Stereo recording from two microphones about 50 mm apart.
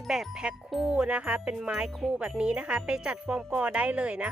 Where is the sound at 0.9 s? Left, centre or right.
Centre.